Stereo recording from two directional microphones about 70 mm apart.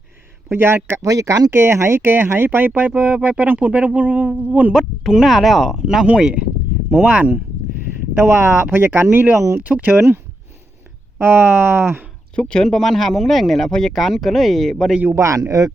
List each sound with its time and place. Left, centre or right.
0.5 s speech: right
1.0 s speech: right
4.7 s speech: centre; by 9.2 s right
9.6 s speech: right
11.2 s speech: right
12.4 s speech: centre
15.1 s a man's voice: right